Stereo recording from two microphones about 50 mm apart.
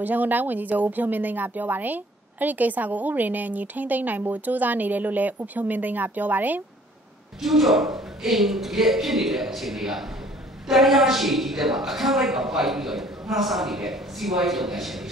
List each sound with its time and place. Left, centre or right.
0.0 s a woman's voice: right
7.4 s a man's voice: centre